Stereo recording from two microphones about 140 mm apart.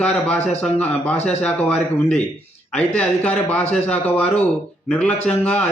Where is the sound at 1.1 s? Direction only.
50° left (ahead or behind).